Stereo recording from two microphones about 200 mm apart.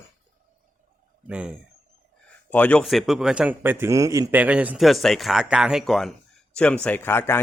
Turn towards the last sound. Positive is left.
turn(degrees=10)  # may be behind; listen again after turning